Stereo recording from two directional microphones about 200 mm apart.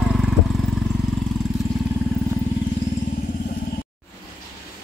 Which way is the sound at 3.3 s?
45° left (ahead or behind).